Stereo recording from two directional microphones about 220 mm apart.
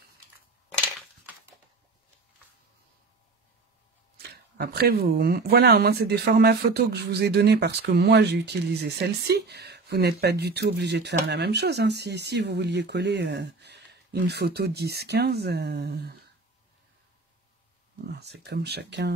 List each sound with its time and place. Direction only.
4.2 s speech: 45° right (ahead or behind)
18.0 s speech: 50° right (ahead or behind)